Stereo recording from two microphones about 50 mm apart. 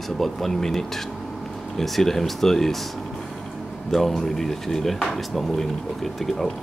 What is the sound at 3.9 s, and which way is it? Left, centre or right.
Speech, centre.